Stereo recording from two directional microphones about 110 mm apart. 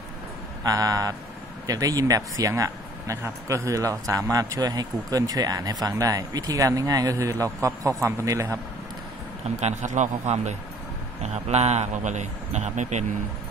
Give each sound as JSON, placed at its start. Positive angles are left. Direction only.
{"t": 0.7, "sound": "speech", "side_deg": -30}
{"t": 9.6, "sound": "a man's voice", "side_deg": -90}